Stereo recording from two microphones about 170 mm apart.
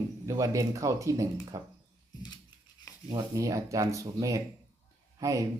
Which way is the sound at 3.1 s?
20° right (ahead or behind).